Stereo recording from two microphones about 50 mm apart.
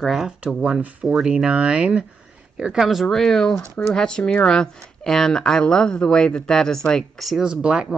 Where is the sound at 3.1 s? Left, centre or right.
Centre.